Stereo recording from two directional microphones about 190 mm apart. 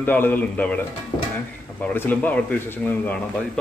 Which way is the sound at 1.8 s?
10° left (ahead or behind).